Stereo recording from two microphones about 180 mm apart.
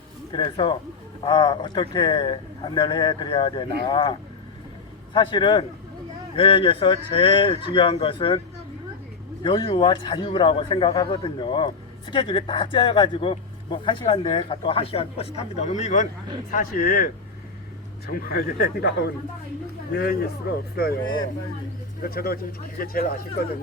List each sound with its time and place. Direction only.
0.3 s a man's voice: 25° left (ahead or behind)
9.4 s a man's voice: 30° left (ahead or behind); by 20.3 s 65° left (ahead or behind)
21.0 s a man's voice: 25° left (ahead or behind)
22.0 s speech: 55° left (ahead or behind)